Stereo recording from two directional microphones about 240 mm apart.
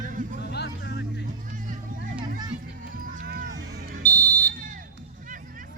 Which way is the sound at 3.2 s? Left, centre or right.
Right.